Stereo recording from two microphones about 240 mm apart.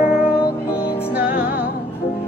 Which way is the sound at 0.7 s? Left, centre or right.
Centre.